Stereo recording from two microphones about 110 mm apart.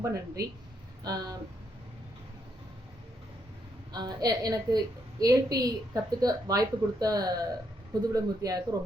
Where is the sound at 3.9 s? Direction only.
40° right (ahead or behind).